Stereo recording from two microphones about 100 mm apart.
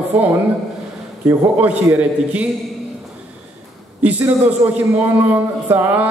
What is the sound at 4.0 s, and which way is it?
A man's voice, 15° right (ahead or behind).